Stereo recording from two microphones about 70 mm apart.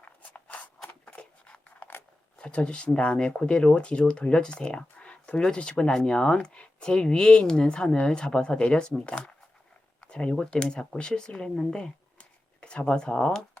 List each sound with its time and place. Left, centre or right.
0.0 s scissors: left
1.0 s a sound: centre
2.4 s speech: centre